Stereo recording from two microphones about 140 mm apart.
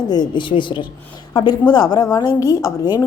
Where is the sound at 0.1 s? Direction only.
30° left (ahead or behind).